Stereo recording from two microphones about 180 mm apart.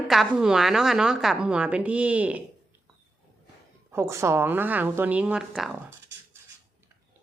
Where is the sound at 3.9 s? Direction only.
15° right (ahead or behind).